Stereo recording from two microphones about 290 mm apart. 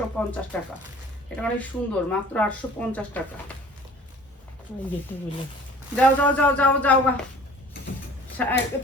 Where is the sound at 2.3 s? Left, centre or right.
Centre.